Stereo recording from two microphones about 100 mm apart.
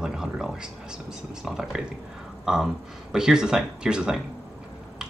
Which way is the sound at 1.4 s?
5° right (ahead or behind).